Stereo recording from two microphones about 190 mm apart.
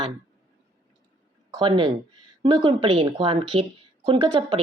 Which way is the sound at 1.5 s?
25° right (ahead or behind).